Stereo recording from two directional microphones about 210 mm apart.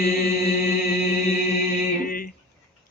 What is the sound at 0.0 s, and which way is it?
Chant, 45° left (ahead or behind).